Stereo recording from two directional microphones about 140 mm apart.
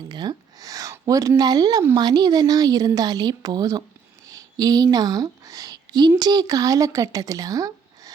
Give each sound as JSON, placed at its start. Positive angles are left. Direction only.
{"t": 0.1, "sound": "a woman's voice", "side_deg": -30}